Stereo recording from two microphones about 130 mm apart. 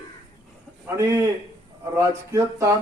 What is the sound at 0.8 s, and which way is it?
Speech, 20° right (ahead or behind).